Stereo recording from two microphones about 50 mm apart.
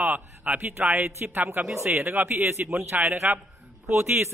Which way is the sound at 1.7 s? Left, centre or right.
Right.